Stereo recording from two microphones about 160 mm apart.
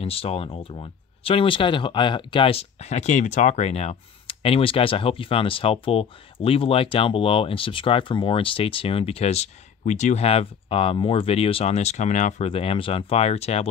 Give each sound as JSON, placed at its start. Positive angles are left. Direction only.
{"t": 0.0, "sound": "speech", "side_deg": 35}
{"t": 12.4, "sound": "speech", "side_deg": 35}